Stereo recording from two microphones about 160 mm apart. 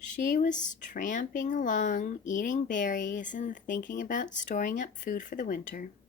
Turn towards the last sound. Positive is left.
turn(degrees=55)  # may be behind; listen again after turning